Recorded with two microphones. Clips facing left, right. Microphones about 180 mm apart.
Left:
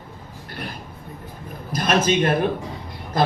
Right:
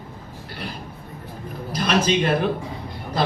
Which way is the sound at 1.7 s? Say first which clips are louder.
Left 1 dB; 50° left (ahead or behind).